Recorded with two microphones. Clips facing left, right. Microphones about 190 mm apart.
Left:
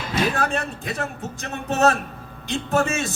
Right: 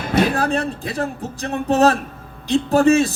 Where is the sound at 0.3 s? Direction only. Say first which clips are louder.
Right 4 dB; 35° right (ahead or behind).